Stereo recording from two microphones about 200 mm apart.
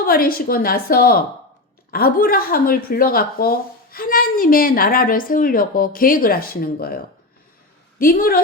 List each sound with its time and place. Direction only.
0.0 s speech: 45° left (ahead or behind)